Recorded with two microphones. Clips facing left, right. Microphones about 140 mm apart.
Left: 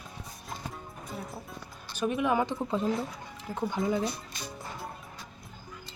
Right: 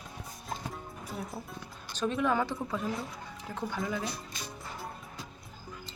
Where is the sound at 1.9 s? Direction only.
15° left (ahead or behind).